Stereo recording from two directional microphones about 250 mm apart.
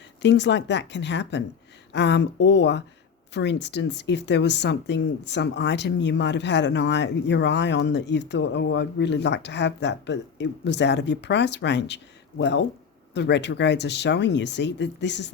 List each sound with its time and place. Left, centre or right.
0.2 s speech: left